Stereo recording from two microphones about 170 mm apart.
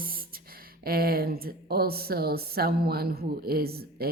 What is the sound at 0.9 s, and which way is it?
Speech, 60° right (ahead or behind).